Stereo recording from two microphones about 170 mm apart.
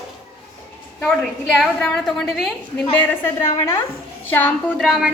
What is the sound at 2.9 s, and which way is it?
A woman's voice, 15° left (ahead or behind).